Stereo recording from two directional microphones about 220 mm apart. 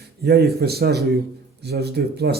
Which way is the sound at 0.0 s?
45° right (ahead or behind).